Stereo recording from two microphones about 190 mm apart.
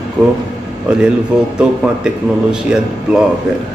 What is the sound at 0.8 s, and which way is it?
A man's voice, 5° right (ahead or behind).